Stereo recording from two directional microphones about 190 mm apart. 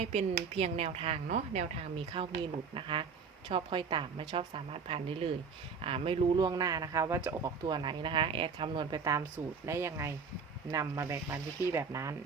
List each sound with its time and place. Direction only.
0.0 s speech: 35° right (ahead or behind)
6.3 s speech: 20° right (ahead or behind)